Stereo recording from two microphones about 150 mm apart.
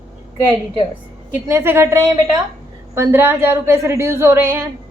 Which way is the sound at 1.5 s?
15° right (ahead or behind).